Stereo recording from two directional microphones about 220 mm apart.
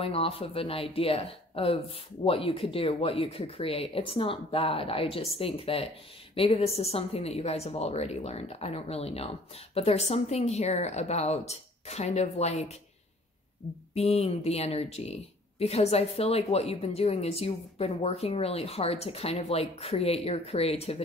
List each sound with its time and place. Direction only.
0.0 s speech: 25° left (ahead or behind)
13.9 s speech: 30° left (ahead or behind)